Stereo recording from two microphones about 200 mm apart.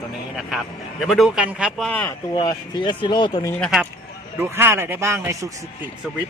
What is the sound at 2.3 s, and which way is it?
Speech, 20° left (ahead or behind).